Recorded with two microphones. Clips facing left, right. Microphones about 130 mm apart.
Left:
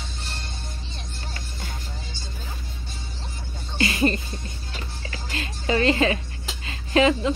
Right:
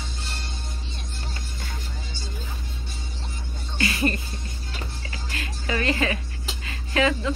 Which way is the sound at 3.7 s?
25° left (ahead or behind).